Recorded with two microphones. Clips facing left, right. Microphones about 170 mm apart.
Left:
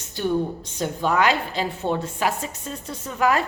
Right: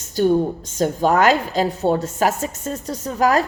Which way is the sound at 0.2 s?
40° right (ahead or behind).